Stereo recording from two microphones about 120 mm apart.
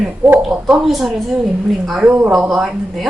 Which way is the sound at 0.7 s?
Centre (ahead or behind).